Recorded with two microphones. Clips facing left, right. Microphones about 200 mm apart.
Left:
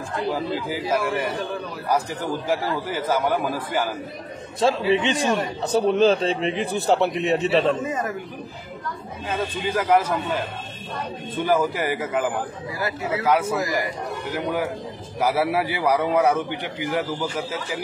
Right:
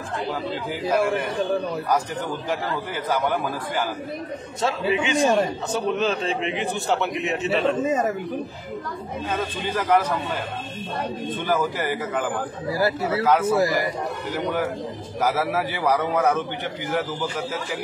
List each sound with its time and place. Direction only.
4.6 s a man's voice: 35° left (ahead or behind)
5.2 s speech: 30° right (ahead or behind)
5.7 s a man's voice: 35° left (ahead or behind)
9.6 s a man's voice: 10° left (ahead or behind)
11.5 s a man's voice: 10° left (ahead or behind)
12.7 s speech: 35° right (ahead or behind)
13.2 s a man's voice: 10° left (ahead or behind)
15.1 s a man's voice: 15° left (ahead or behind)